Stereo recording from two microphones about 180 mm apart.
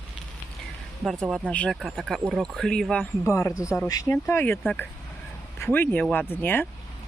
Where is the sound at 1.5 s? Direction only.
5° left (ahead or behind).